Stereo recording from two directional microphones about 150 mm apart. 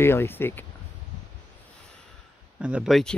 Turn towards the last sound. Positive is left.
turn(degrees=0)  # may be behind; listen again after turning